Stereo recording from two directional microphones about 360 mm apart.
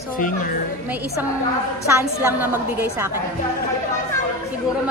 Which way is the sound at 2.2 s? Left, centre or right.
Centre.